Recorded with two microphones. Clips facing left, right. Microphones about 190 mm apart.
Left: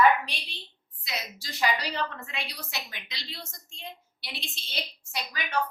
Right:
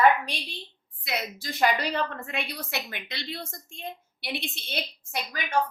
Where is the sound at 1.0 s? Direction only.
55° right (ahead or behind).